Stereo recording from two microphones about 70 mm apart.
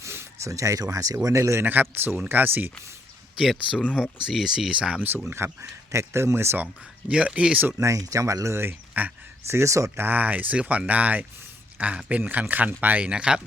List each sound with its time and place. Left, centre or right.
0.0 s a sound: right
0.5 s speech: right
1.6 s speech: right
3.3 s speech: centre
5.0 s speech: right
7.1 s speech: centre
7.8 s speech: right
8.9 s speech: right
9.5 s speech: right
10.0 s speech: right